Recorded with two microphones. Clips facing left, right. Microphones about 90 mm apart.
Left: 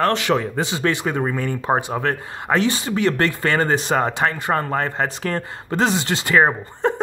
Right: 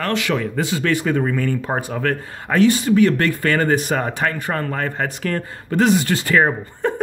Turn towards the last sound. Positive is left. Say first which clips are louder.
# left 1 dB
turn(degrees=20)  # may be behind; listen again after turning